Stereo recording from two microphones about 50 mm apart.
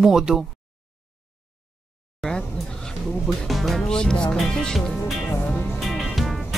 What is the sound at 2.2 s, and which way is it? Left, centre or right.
Speech, centre.